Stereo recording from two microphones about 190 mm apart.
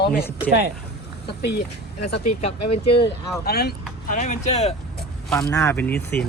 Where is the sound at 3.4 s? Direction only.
55° left (ahead or behind).